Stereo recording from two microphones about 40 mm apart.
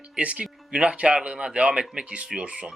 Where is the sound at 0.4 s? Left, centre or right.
Right.